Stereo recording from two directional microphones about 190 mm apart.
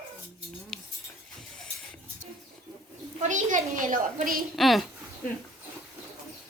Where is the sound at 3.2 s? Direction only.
40° right (ahead or behind).